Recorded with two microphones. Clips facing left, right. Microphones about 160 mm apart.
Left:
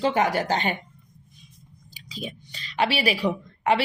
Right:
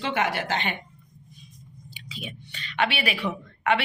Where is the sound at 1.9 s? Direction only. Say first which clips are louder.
Left 4 dB; 35° left (ahead or behind).